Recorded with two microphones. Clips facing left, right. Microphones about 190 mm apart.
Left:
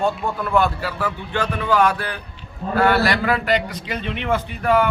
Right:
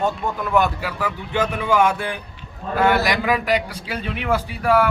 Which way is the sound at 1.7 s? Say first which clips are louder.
Even; 20° right (ahead or behind).